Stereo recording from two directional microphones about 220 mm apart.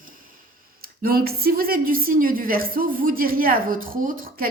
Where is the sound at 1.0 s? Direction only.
45° right (ahead or behind).